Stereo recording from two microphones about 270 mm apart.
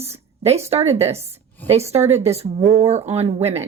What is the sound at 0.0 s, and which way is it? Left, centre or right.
A woman's voice, right.